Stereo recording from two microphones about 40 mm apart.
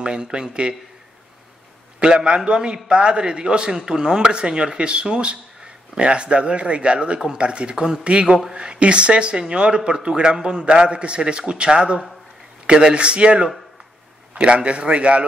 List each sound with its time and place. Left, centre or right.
0.0 s a man's voice: right
2.0 s a man's voice: right